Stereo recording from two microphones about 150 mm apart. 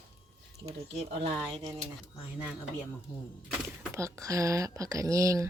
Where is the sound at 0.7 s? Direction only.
45° right (ahead or behind).